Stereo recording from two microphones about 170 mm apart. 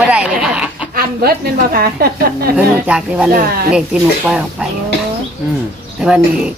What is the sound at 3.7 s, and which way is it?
Speech, 5° right (ahead or behind).